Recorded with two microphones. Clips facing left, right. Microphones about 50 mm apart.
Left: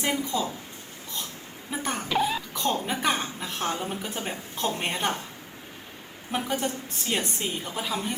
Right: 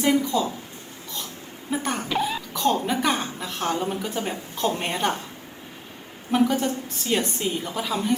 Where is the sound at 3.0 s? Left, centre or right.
Left.